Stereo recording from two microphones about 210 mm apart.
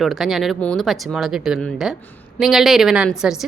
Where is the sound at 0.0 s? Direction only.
Centre (ahead or behind).